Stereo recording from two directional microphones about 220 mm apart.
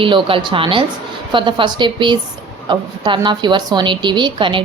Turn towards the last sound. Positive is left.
turn(degrees=-20)  # may be behind; listen again after turning